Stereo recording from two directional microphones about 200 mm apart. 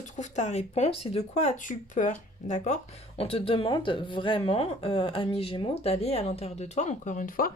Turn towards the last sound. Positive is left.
turn(degrees=45)  # may be behind; listen again after turning